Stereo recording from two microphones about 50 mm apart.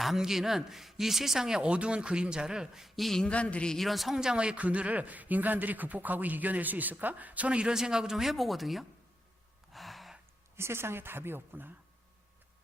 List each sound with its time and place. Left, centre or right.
0.0 s speech: centre
2.9 s speech: centre
3.2 s speech: left
3.8 s a man's voice: centre
9.7 s gasp: centre
10.6 s speech: right